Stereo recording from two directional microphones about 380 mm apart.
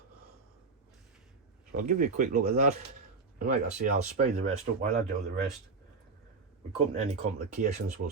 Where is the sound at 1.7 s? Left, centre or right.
Centre.